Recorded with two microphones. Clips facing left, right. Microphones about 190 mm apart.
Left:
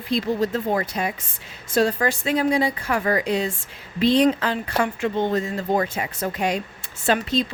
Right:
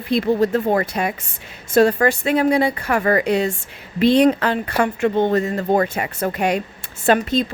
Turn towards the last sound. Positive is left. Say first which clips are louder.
# right 5 dB
turn(degrees=-55)  # may be behind; listen again after turning